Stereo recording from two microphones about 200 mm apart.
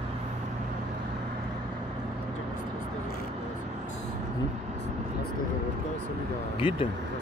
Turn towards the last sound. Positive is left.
turn(degrees=25)  # may be behind; listen again after turning